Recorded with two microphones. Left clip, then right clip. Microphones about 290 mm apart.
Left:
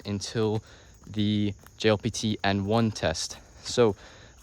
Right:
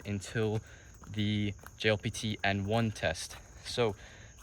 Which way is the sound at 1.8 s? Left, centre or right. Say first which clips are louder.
Left 6 dB; left.